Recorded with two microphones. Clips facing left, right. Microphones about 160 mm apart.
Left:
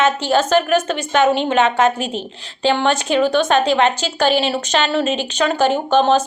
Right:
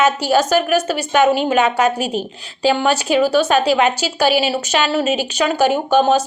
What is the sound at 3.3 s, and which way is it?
Speech, 10° right (ahead or behind).